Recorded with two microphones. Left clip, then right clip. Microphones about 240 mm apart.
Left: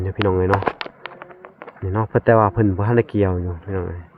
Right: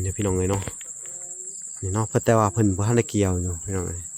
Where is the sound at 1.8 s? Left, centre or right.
Right.